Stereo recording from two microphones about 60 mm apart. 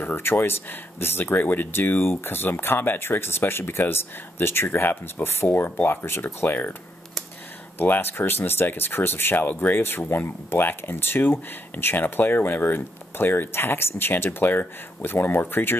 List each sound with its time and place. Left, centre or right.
0.0 s speech: left
7.8 s speech: left